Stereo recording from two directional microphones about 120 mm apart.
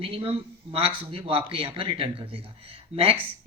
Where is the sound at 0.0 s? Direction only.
50° right (ahead or behind).